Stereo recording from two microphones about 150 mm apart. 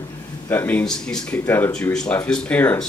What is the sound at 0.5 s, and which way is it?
Speech, 10° left (ahead or behind).